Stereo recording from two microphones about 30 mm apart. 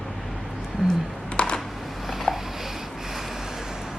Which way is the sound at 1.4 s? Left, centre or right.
Left.